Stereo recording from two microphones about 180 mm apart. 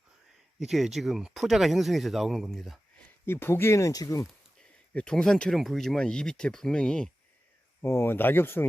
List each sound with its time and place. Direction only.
0.6 s speech: centre (ahead or behind)
3.2 s speech: 10° left (ahead or behind)
4.9 s speech: 5° left (ahead or behind)